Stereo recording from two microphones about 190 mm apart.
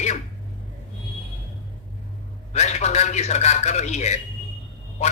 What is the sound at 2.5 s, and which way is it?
A man's voice, 35° left (ahead or behind).